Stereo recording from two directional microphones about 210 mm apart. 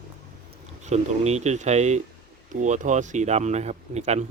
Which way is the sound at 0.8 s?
30° right (ahead or behind).